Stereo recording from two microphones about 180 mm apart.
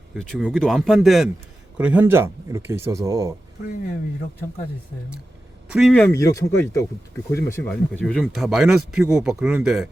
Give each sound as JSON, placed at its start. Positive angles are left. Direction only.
{"t": 0.1, "sound": "speech", "side_deg": -5}
{"t": 5.7, "sound": "speech", "side_deg": 5}
{"t": 7.7, "sound": "speech", "side_deg": 5}